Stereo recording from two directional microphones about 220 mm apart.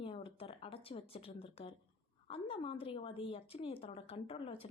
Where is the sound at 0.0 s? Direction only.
25° left (ahead or behind).